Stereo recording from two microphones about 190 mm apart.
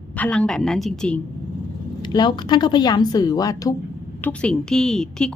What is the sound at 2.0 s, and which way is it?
A woman's voice, 25° left (ahead or behind).